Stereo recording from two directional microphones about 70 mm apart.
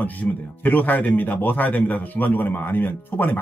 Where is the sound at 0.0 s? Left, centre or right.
Left.